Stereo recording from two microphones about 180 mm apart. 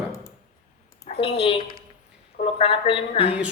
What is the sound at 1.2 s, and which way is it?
Speech, 30° left (ahead or behind).